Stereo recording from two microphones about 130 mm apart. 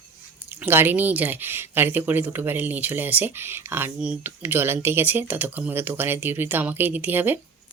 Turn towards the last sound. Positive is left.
turn(degrees=-15)  # may be behind; listen again after turning